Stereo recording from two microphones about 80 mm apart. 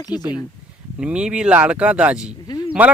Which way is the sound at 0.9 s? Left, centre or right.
Centre.